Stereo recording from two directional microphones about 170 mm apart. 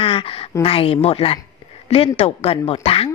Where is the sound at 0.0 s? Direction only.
30° left (ahead or behind).